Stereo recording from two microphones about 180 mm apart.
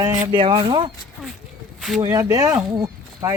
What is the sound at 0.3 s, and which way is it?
Speech, 30° right (ahead or behind).